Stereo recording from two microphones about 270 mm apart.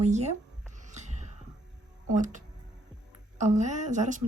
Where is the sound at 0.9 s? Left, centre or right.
Right.